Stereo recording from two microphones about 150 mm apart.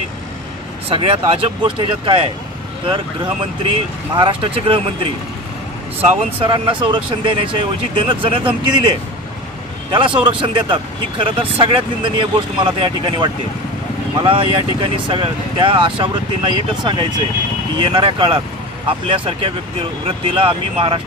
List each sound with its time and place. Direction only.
0.8 s speech: 40° right (ahead or behind)
4.1 s speech: 35° right (ahead or behind)
9.9 s speech: 35° right (ahead or behind)